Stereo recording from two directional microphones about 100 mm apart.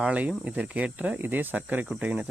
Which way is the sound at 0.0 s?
15° right (ahead or behind).